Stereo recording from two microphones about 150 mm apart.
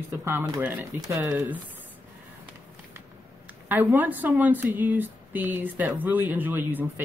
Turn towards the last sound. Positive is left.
turn(degrees=-15)  # may be behind; listen again after turning